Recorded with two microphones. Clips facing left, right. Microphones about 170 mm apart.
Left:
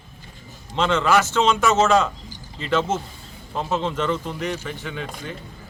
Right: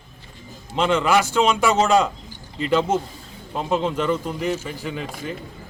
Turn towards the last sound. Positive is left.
turn(degrees=-5)  # may be behind; listen again after turning